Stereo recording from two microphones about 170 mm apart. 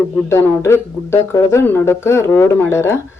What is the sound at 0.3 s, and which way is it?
Speech, 15° left (ahead or behind).